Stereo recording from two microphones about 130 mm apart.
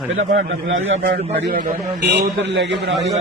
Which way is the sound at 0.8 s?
80° right.